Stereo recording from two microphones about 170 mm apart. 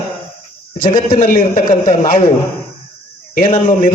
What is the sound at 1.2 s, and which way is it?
A man's voice, 45° left (ahead or behind).